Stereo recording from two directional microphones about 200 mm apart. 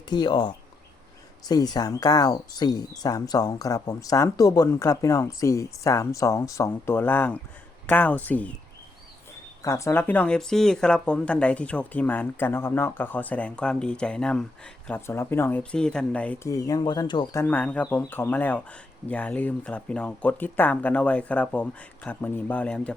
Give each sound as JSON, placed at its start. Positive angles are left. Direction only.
{"t": 0.1, "sound": "speech", "side_deg": 20}
{"t": 9.6, "sound": "speech", "side_deg": 15}
{"t": 17.4, "sound": "speech", "side_deg": 10}